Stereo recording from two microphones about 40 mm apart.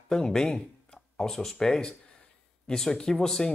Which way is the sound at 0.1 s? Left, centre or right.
Centre.